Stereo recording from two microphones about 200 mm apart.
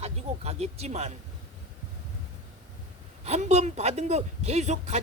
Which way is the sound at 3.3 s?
35° right (ahead or behind).